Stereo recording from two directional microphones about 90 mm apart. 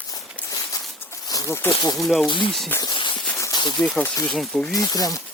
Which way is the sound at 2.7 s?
25° left (ahead or behind).